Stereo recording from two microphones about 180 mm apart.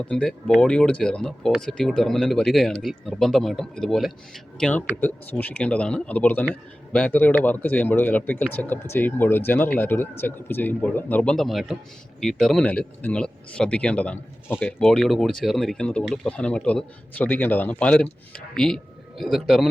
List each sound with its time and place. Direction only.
0.0 s speech: 5° left (ahead or behind)